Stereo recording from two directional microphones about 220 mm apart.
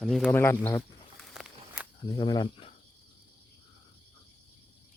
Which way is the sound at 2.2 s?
20° left (ahead or behind).